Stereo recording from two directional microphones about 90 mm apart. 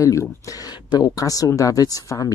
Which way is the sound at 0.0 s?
35° left (ahead or behind).